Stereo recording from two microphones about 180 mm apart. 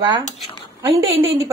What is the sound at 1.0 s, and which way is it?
Speech, 90° right.